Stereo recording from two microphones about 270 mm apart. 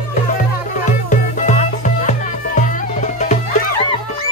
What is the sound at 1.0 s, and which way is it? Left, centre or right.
Music, left.